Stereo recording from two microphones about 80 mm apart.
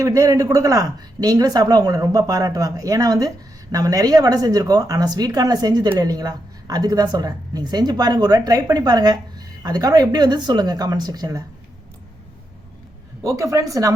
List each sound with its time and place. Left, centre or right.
0.0 s speech: right
13.2 s speech: right